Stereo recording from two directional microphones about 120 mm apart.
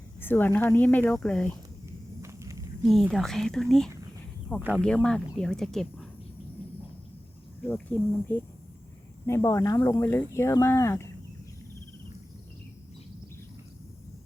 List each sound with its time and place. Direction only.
0.2 s speech: 15° left (ahead or behind)
2.2 s walk: 25° right (ahead or behind)
2.8 s speech: centre (ahead or behind)
7.7 s speech: 15° left (ahead or behind)